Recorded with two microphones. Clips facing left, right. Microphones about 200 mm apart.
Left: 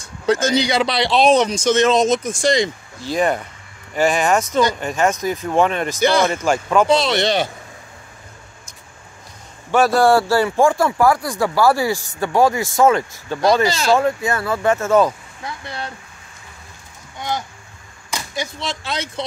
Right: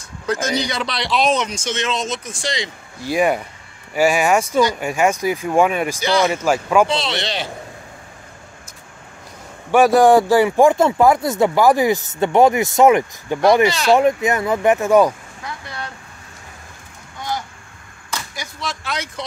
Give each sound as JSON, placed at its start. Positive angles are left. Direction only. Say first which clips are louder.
{"t": 0.3, "sound": "speech", "louder": "left 5 dB", "side_deg": 30}
{"t": 3.0, "sound": "speech", "louder": "right 1 dB", "side_deg": -10}
{"t": 6.9, "sound": "speech", "louder": "left 6 dB", "side_deg": 45}
{"t": 9.7, "sound": "speech", "louder": "right 3 dB", "side_deg": -15}
{"t": 18.1, "sound": "speech", "louder": "left 4 dB", "side_deg": 25}